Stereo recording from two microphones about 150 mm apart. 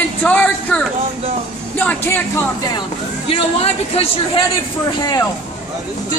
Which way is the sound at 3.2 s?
40° left (ahead or behind).